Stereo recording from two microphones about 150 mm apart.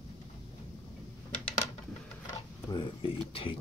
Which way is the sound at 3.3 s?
40° left (ahead or behind).